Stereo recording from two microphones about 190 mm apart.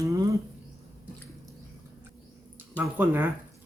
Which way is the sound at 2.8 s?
10° right (ahead or behind).